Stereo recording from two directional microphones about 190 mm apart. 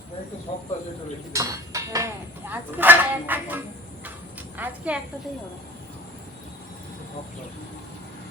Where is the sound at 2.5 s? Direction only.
10° right (ahead or behind).